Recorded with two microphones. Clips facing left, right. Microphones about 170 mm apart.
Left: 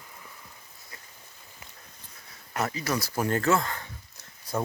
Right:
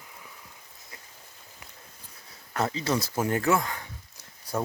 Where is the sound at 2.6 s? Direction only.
25° right (ahead or behind).